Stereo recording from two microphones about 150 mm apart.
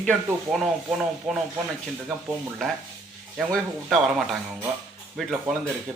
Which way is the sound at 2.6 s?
5° left (ahead or behind).